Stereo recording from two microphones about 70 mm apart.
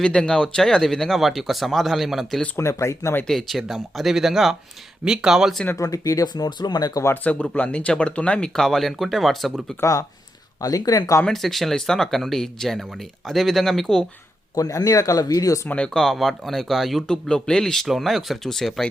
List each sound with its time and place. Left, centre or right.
0.0 s speech: centre
2.6 s speech: left
3.2 s speech: centre
5.7 s speech: left
7.3 s speech: centre
9.8 s speech: left
10.6 s speech: left
11.3 s speech: centre
14.5 s speech: left
15.7 s speech: centre